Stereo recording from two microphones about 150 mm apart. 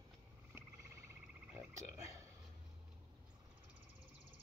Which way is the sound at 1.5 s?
20° right (ahead or behind).